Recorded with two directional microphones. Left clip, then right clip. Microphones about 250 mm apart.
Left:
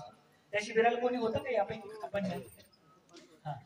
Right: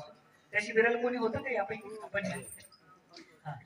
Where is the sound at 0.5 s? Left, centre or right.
Left.